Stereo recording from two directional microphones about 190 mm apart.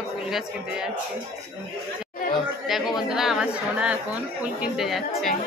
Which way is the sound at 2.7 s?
Centre (ahead or behind).